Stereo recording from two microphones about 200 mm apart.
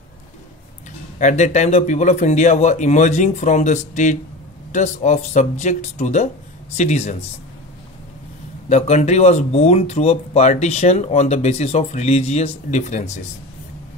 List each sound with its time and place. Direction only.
1.1 s speech: 35° left (ahead or behind)
8.6 s speech: 35° left (ahead or behind)